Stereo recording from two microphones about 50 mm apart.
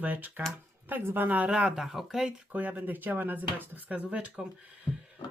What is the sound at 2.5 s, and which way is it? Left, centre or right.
Speech, right.